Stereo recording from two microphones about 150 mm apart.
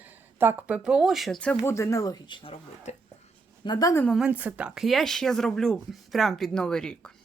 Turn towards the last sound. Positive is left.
turn(degrees=5)  # may be behind; listen again after turning